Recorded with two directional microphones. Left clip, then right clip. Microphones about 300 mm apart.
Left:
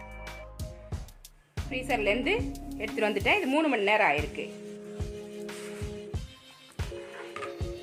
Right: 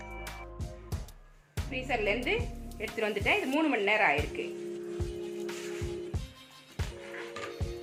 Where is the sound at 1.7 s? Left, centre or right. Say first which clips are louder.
Left 3 dB; left.